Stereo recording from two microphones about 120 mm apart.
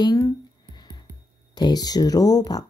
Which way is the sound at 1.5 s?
35° left (ahead or behind).